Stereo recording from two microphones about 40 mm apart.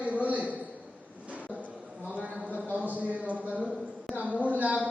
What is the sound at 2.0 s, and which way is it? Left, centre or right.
Clip-clop, right.